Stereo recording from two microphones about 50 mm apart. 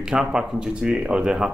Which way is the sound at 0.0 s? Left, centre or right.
Centre.